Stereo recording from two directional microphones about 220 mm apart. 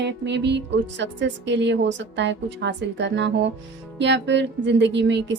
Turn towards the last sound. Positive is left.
turn(degrees=-55)  # may be behind; listen again after turning